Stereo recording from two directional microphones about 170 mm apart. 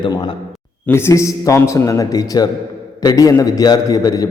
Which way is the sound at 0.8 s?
15° left (ahead or behind).